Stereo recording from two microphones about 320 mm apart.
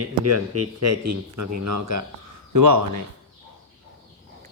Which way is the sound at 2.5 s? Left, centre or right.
Right.